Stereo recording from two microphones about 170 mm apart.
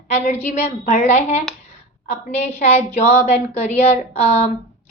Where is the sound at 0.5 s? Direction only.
40° left (ahead or behind).